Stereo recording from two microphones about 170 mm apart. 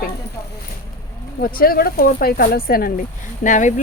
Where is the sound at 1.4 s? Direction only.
60° left (ahead or behind).